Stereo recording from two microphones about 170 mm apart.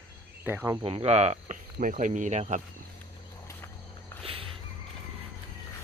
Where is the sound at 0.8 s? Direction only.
35° right (ahead or behind).